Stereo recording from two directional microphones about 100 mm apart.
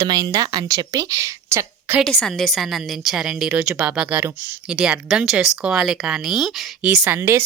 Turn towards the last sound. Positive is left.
turn(degrees=-25)  # may be behind; listen again after turning